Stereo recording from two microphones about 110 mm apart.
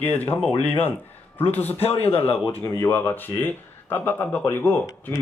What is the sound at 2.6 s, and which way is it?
Speech, 30° left (ahead or behind).